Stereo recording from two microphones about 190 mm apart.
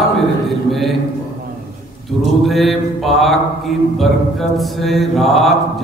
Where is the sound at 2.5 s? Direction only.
Centre (ahead or behind).